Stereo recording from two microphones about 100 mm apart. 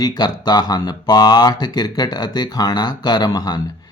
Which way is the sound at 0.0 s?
45° left (ahead or behind).